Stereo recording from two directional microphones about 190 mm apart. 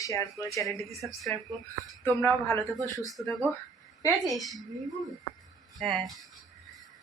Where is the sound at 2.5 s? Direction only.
15° left (ahead or behind).